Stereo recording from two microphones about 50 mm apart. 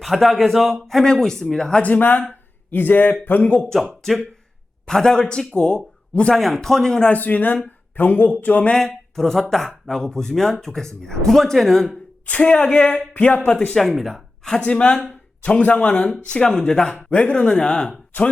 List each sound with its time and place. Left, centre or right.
0.0 s a man's voice: centre
1.8 s speech: left
4.9 s speech: centre
6.3 s speech: centre
7.1 s speech: left
8.7 s speech: centre
12.2 s speech: left
13.7 s speech: centre
14.6 s speech: left